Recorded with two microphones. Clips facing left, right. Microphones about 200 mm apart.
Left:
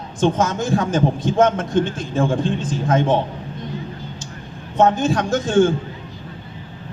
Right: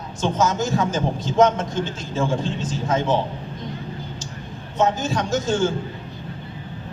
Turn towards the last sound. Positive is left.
turn(degrees=55)  # may be behind; listen again after turning